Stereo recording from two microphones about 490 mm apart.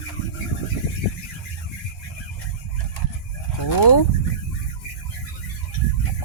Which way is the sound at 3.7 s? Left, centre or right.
Left.